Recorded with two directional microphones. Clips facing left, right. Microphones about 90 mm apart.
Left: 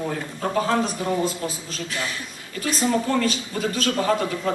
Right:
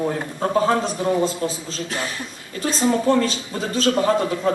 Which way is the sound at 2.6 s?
30° right (ahead or behind).